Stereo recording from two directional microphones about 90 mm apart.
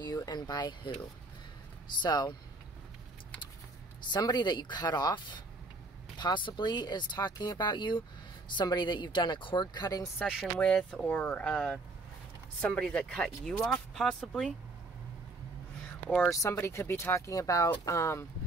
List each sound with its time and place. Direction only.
0.0 s a sound: 50° left (ahead or behind)
2.0 s speech: 55° left (ahead or behind)
4.1 s speech: 50° left (ahead or behind)
10.2 s speech: centre (ahead or behind)
16.3 s speech: 35° left (ahead or behind)